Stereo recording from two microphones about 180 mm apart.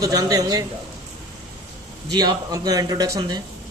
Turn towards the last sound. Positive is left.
turn(degrees=-20)  # may be behind; listen again after turning